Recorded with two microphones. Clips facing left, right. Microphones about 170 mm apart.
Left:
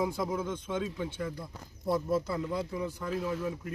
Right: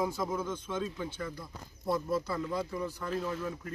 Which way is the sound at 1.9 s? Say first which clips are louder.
Left 2 dB; 15° left (ahead or behind).